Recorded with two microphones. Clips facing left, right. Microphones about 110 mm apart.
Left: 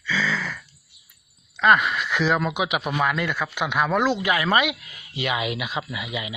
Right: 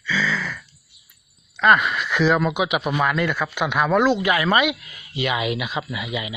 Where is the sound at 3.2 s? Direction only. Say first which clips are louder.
Right 3 dB; 45° right (ahead or behind).